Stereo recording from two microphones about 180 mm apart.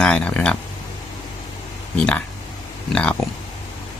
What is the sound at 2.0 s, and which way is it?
Speech, 5° left (ahead or behind).